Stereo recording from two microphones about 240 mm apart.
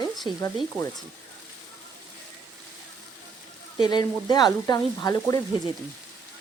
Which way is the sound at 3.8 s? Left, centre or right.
Centre.